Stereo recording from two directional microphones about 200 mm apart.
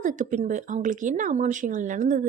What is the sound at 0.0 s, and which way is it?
Speech, 40° right (ahead or behind).